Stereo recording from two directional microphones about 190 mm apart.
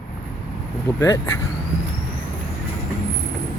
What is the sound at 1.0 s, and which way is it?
Speech, 10° left (ahead or behind).